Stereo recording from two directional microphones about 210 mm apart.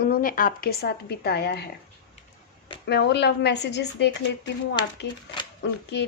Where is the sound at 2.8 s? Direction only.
55° left (ahead or behind).